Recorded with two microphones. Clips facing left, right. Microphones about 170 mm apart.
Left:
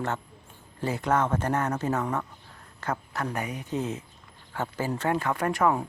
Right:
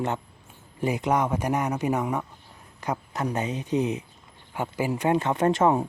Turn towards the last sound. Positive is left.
turn(degrees=-25)  # may be behind; listen again after turning